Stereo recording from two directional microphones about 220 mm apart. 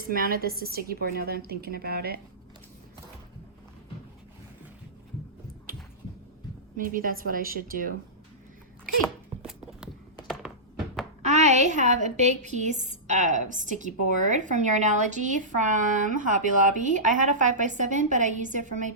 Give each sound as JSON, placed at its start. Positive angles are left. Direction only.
{"t": 0.1, "sound": "a woman's voice", "side_deg": -40}
{"t": 6.7, "sound": "a woman's voice", "side_deg": -40}
{"t": 9.5, "sound": "a sound", "side_deg": 0}
{"t": 10.2, "sound": "thunk", "side_deg": 0}
{"t": 11.2, "sound": "a woman's voice", "side_deg": -30}